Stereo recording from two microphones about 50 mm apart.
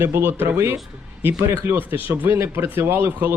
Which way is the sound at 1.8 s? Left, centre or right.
Right.